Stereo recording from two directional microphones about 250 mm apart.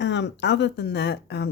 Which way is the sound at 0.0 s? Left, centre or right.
Left.